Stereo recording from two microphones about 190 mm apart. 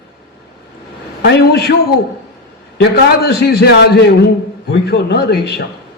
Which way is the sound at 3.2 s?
60° left (ahead or behind).